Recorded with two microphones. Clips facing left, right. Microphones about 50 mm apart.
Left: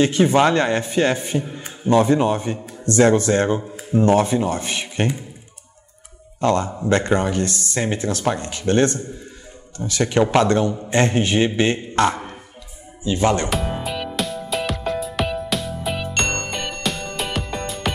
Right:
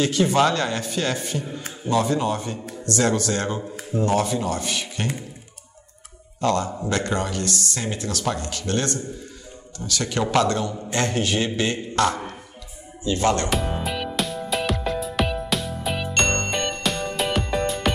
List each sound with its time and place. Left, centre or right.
0.0 s speech: left
6.4 s speech: left
13.0 s speech: centre
13.5 s music: centre